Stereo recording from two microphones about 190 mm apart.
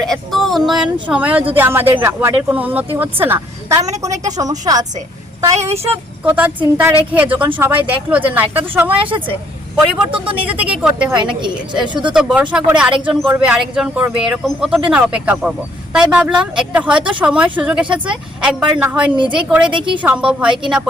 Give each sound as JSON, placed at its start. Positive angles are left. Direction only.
{"t": 0.0, "sound": "a sound", "side_deg": 0}
{"t": 1.1, "sound": "a woman's voice", "side_deg": -5}
{"t": 5.5, "sound": "speech", "side_deg": -35}
{"t": 6.2, "sound": "speech", "side_deg": -10}
{"t": 10.1, "sound": "a woman's voice", "side_deg": -25}
{"t": 10.5, "sound": "speech", "side_deg": -5}
{"t": 11.3, "sound": "a woman's voice", "side_deg": -25}
{"t": 12.1, "sound": "speech", "side_deg": -5}
{"t": 19.1, "sound": "a woman's voice", "side_deg": -25}
{"t": 19.4, "sound": "speech", "side_deg": -5}
{"t": 19.7, "sound": "a woman's voice", "side_deg": -25}
{"t": 20.0, "sound": "speech", "side_deg": -5}